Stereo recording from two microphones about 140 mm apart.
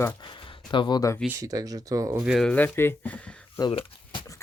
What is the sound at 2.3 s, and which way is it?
Speech, 5° left (ahead or behind).